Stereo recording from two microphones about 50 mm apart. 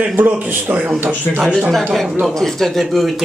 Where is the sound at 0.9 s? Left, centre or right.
Right.